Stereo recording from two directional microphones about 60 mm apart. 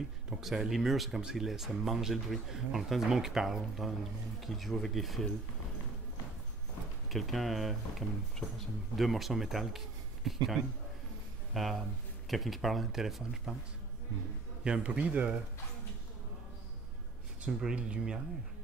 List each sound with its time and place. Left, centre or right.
0.4 s speech: centre
7.1 s speech: centre
14.6 s speech: centre
17.5 s speech: centre